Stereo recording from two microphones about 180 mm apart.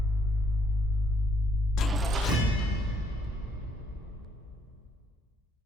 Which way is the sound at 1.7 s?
Centre (ahead or behind).